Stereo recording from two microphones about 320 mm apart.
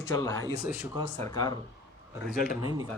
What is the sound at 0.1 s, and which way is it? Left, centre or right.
Speech, centre.